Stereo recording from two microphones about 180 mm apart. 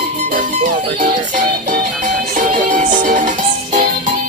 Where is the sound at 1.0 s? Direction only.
45° right (ahead or behind).